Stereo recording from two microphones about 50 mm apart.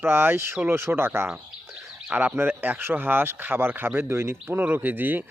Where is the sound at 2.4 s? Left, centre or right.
Right.